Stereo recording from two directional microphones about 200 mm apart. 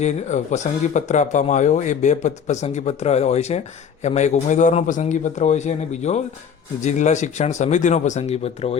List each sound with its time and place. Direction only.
0.0 s speech: 35° left (ahead or behind)